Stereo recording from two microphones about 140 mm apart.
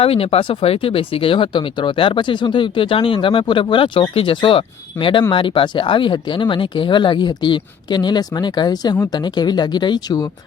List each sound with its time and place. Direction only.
0.0 s speech: 45° left (ahead or behind)